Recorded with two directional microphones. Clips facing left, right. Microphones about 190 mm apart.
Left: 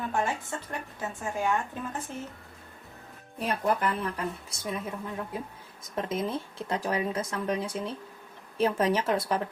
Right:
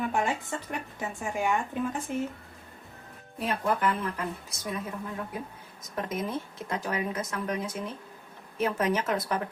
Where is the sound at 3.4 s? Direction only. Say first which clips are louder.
Even; 40° left (ahead or behind).